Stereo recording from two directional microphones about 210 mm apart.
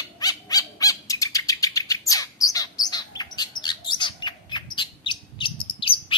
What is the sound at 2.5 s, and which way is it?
Chirp, 15° left (ahead or behind).